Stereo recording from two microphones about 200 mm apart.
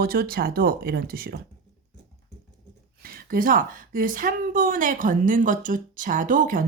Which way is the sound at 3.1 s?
45° right (ahead or behind).